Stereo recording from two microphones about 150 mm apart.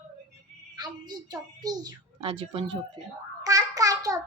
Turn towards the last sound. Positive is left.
turn(degrees=-25)  # may be behind; listen again after turning